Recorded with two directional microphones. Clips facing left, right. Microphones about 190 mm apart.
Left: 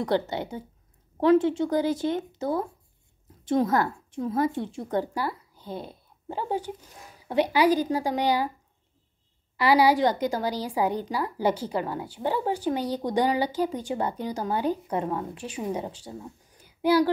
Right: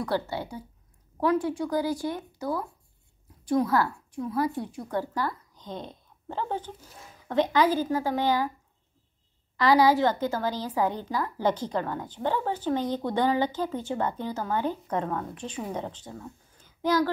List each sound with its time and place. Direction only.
0.0 s a woman's voice: 20° left (ahead or behind)
4.9 s a woman's voice: 15° left (ahead or behind)
9.6 s a woman's voice: 10° left (ahead or behind)